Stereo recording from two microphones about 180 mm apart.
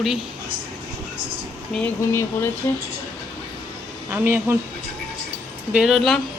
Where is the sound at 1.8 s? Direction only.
10° left (ahead or behind).